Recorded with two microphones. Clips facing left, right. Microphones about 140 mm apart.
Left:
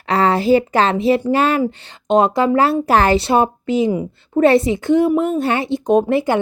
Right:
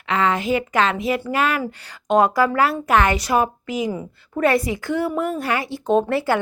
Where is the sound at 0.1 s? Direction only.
35° left (ahead or behind).